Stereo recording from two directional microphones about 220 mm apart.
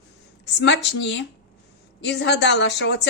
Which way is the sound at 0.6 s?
55° left (ahead or behind).